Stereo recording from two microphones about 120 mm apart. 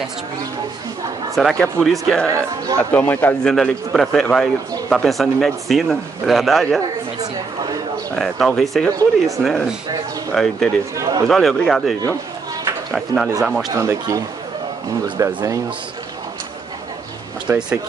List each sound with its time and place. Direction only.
1.3 s a man's voice: 5° left (ahead or behind)
2.2 s speech: 25° right (ahead or behind)
2.9 s a man's voice: 15° left (ahead or behind)
3.4 s a man's voice: 5° left (ahead or behind)
8.2 s a man's voice: centre (ahead or behind)
12.9 s a man's voice: centre (ahead or behind)
13.7 s speech: 30° right (ahead or behind)
17.5 s speech: 5° right (ahead or behind)